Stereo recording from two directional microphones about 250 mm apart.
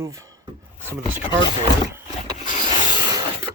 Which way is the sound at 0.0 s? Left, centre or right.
Centre.